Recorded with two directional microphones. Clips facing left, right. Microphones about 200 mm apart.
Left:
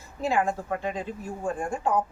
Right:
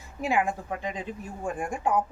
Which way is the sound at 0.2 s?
15° right (ahead or behind).